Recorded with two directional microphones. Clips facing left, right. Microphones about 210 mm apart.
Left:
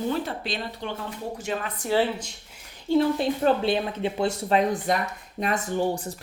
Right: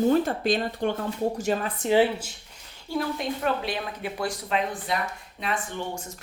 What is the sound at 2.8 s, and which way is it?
Speech, 30° left (ahead or behind).